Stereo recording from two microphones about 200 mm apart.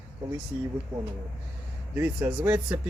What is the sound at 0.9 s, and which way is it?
Speech, 5° right (ahead or behind).